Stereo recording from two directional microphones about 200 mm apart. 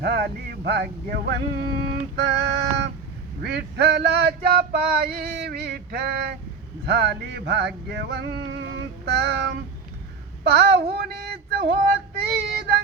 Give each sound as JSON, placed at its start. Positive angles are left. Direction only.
{"t": 0.0, "sound": "male singing", "side_deg": -55}
{"t": 3.4, "sound": "male singing", "side_deg": -55}